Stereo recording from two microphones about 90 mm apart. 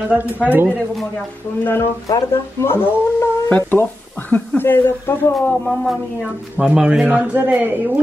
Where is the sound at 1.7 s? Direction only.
30° left (ahead or behind).